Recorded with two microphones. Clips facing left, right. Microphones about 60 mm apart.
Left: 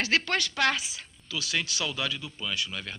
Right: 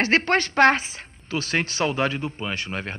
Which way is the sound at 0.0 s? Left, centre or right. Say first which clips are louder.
Right 7 dB; right.